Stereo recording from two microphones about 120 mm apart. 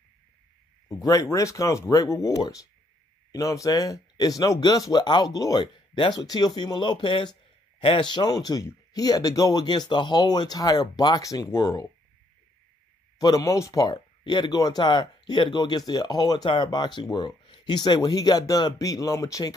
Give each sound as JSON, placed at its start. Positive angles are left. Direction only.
{"t": 0.8, "sound": "speech", "side_deg": 30}
{"t": 13.2, "sound": "speech", "side_deg": 30}